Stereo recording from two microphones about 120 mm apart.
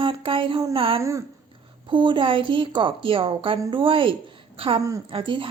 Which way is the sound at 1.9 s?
45° right (ahead or behind).